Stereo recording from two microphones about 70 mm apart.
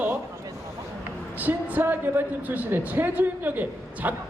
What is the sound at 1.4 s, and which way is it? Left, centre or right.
A woman's voice, right.